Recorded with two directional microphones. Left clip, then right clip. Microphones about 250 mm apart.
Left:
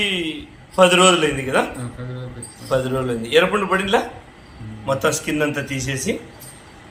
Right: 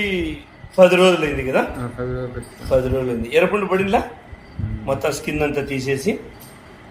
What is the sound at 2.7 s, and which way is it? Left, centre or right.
A man's voice, centre.